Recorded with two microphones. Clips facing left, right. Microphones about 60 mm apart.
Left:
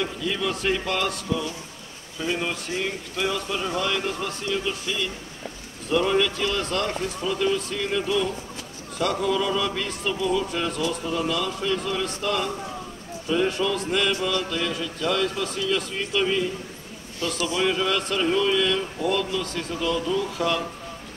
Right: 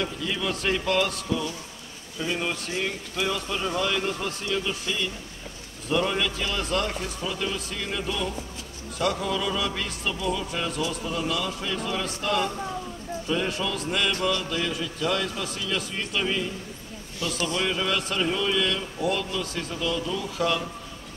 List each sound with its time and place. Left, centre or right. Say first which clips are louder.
0.4 s speech: left 1 dB; centre
5.9 s speech: left 4 dB; centre
17.2 s a man's voice: left 2 dB; left
17.6 s speech: left 4 dB; centre